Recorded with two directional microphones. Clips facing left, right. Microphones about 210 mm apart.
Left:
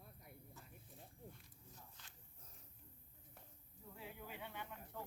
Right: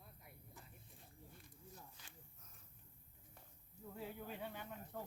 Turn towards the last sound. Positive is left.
turn(degrees=-40)  # may be behind; listen again after turning